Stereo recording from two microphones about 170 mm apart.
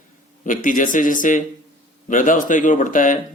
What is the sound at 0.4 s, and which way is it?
Speech, 50° left (ahead or behind).